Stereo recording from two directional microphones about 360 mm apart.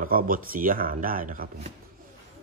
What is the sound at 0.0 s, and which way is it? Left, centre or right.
Speech, right.